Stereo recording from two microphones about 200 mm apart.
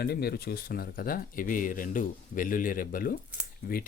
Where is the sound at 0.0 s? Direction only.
50° left (ahead or behind).